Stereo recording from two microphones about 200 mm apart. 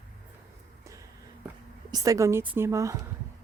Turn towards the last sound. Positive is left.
turn(degrees=-15)  # may be behind; listen again after turning